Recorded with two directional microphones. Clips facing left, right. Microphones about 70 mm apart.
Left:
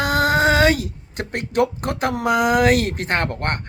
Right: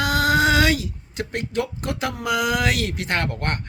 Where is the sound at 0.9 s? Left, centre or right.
Left.